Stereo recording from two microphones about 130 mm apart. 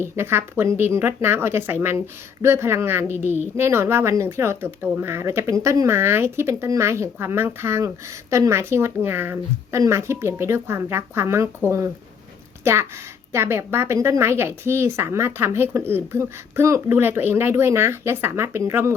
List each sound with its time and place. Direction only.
0.0 s speech: 20° right (ahead or behind)
13.3 s speech: 20° right (ahead or behind)